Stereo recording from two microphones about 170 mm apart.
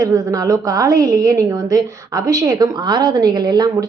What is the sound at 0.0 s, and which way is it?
A woman's voice, 20° right (ahead or behind).